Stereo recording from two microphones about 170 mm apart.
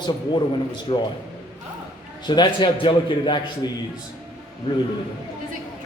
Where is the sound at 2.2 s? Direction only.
25° left (ahead or behind).